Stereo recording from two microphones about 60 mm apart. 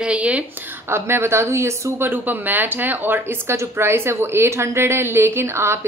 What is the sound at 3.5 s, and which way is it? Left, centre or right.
A woman's voice, right.